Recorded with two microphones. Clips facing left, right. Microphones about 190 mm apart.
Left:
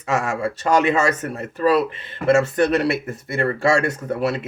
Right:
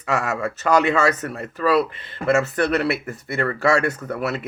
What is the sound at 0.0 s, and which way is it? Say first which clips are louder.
Speech: left 1 dB; 25° left (ahead or behind).